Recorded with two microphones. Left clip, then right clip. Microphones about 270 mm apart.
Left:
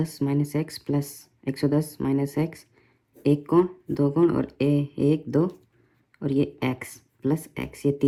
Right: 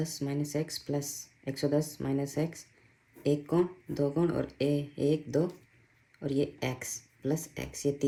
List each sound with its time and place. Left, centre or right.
0.0 s speech: centre